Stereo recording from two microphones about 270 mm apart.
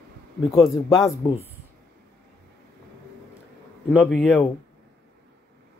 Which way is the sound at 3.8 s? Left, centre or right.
Centre.